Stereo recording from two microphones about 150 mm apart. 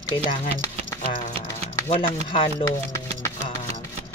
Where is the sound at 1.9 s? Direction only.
35° left (ahead or behind).